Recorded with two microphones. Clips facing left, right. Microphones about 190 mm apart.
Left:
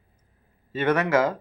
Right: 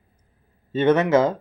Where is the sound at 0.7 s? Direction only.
25° right (ahead or behind).